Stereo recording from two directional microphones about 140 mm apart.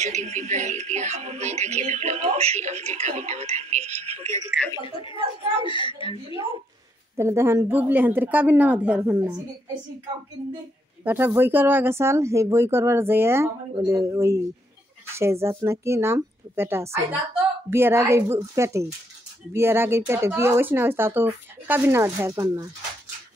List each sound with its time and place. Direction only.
0.0 s speech: 55° right (ahead or behind)
4.7 s a woman's voice: 35° left (ahead or behind)
7.2 s speech: 20° right (ahead or behind)
11.1 s speech: 15° right (ahead or behind)